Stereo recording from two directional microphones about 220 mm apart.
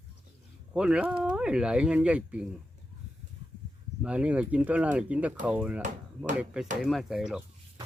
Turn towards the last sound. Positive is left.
turn(degrees=-5)  # may be behind; listen again after turning